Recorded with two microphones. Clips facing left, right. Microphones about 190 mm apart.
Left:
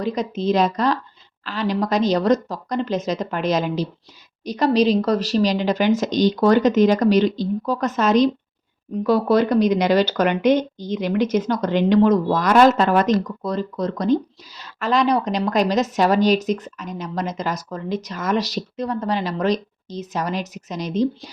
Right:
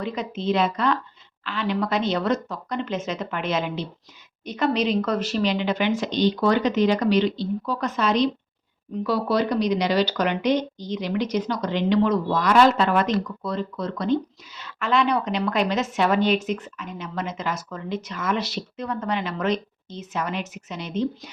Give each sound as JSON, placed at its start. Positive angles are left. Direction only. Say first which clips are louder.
{"t": 0.0, "sound": "speech", "louder": "left 5 dB", "side_deg": 40}